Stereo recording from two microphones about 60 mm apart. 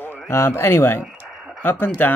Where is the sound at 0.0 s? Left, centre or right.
Left.